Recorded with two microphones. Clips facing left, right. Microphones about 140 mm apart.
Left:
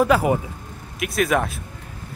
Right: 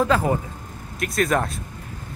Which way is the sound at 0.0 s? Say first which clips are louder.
Left 2 dB; 10° left (ahead or behind).